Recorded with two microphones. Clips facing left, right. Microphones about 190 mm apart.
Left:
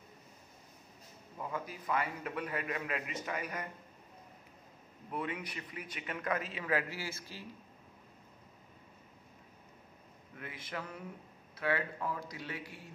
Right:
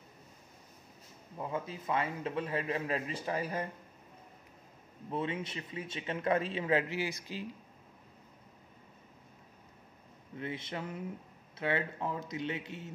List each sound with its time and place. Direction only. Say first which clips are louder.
1.4 s speech: right 3 dB; 25° right (ahead or behind)
5.1 s speech: right 3 dB; 25° right (ahead or behind)
10.3 s speech: right 5 dB; 25° right (ahead or behind)